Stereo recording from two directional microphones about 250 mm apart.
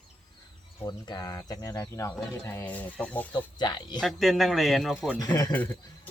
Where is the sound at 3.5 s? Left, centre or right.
Centre.